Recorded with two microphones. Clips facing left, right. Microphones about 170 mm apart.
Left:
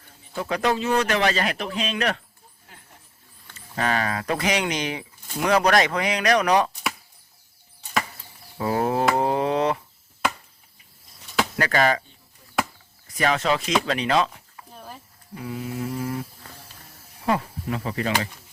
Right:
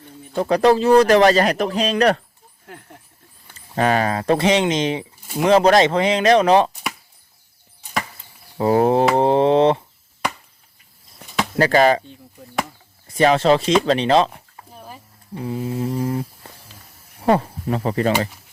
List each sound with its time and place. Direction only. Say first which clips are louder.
0.3 s a man's voice: right 9 dB; 35° right (ahead or behind)
3.5 s speech: right 7 dB; 35° right (ahead or behind)
8.5 s speech: right 7 dB; 30° right (ahead or behind)
9.1 s a sound: right 7 dB; 25° right (ahead or behind)
11.2 s a sound: right 6 dB; 55° right (ahead or behind)
11.5 s a man's voice: right 8 dB; 30° right (ahead or behind)
13.1 s a man's voice: right 8 dB; 30° right (ahead or behind)
14.7 s a sound: right 2 dB; 5° right (ahead or behind)
15.4 s a man's voice: right 6 dB; 30° right (ahead or behind)